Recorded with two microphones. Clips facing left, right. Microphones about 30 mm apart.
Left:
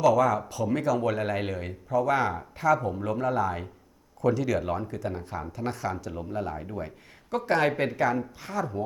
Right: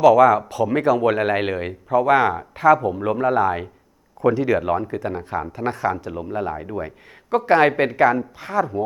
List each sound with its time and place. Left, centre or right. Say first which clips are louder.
0.0 s speech: right 9 dB; right